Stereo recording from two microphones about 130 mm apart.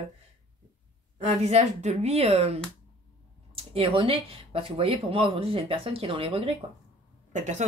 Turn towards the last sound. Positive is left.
turn(degrees=-65)  # may be behind; listen again after turning